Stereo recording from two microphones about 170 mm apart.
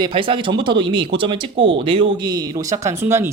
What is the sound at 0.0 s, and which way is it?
Speech, 30° right (ahead or behind).